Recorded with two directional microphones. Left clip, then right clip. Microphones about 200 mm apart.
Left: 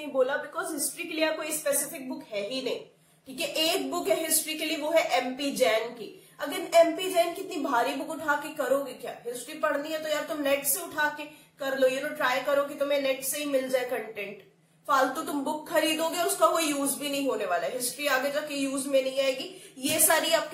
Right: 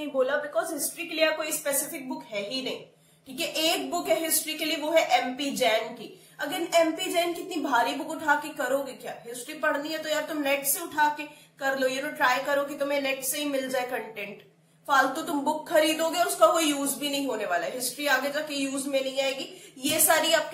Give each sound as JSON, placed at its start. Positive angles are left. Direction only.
{"t": 1.1, "sound": "a woman's voice", "side_deg": 0}
{"t": 6.5, "sound": "a man's voice", "side_deg": -5}